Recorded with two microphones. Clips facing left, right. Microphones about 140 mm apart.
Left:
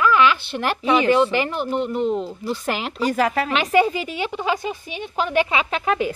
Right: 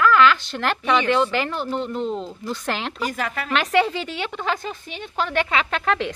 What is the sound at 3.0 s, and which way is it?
Speech, 35° left (ahead or behind).